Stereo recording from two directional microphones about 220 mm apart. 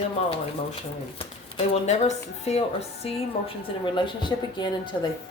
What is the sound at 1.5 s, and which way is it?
A woman's voice, 30° left (ahead or behind).